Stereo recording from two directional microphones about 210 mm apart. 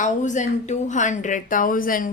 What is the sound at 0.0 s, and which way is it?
A woman's voice, 35° left (ahead or behind).